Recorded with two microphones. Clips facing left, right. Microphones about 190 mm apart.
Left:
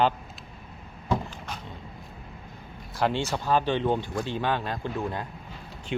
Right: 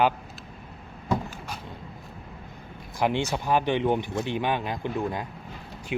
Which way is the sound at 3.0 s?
15° right (ahead or behind).